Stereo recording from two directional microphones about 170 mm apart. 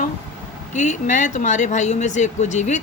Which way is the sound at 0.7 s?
45° left (ahead or behind).